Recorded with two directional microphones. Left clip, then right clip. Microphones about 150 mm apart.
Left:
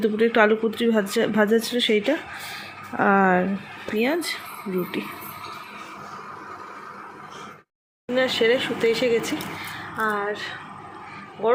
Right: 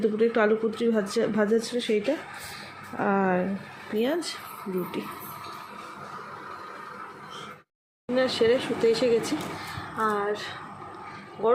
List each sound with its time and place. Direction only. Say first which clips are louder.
0.0 s speech: left 4 dB; centre (ahead or behind)
8.1 s a woman's voice: left 3 dB; 5° right (ahead or behind)